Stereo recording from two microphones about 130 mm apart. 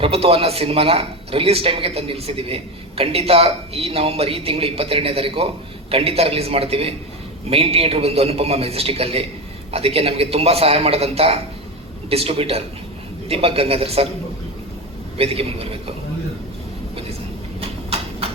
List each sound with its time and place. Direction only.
0.0 s speech: 50° right (ahead or behind)
15.2 s speech: 50° right (ahead or behind)